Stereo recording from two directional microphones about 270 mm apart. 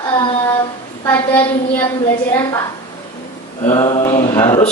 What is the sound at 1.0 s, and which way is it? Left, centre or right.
A man's voice, centre.